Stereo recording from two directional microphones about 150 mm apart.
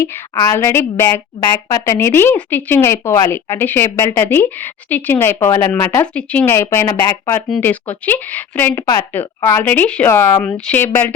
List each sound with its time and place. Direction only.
0.0 s a woman's voice: 25° left (ahead or behind)